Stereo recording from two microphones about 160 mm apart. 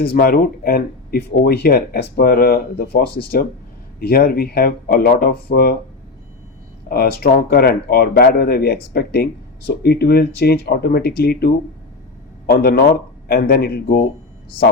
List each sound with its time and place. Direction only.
0.0 s speech: 70° left (ahead or behind)
6.8 s speech: 70° left (ahead or behind)